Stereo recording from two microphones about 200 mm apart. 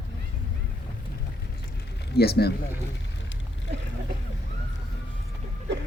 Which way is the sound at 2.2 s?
50° left (ahead or behind).